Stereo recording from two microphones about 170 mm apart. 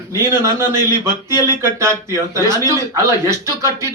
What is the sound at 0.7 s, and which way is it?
Speech, 15° right (ahead or behind).